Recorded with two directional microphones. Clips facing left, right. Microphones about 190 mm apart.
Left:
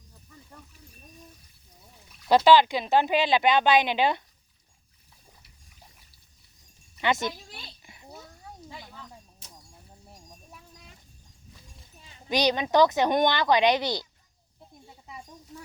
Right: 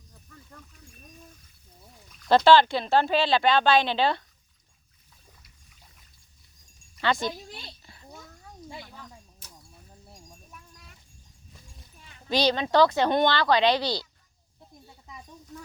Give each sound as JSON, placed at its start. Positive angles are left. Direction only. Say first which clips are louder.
{"t": 0.1, "sound": "snake", "louder": "even", "side_deg": 10}
{"t": 2.0, "sound": "speech", "louder": "even", "side_deg": 5}
{"t": 7.0, "sound": "speech", "louder": "even", "side_deg": 20}
{"t": 7.9, "sound": "a sound", "louder": "left 1 dB", "side_deg": 15}
{"t": 12.0, "sound": "speech", "louder": "even", "side_deg": 25}
{"t": 14.8, "sound": "a sound", "louder": "left 3 dB", "side_deg": 25}